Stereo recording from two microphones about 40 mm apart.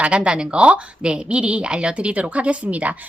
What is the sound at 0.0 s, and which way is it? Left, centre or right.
A woman's voice, right.